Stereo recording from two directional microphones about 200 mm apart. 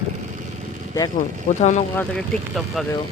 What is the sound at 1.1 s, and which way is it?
Speech, 40° left (ahead or behind).